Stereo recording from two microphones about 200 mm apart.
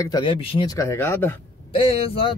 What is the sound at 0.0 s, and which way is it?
Speech, 20° left (ahead or behind).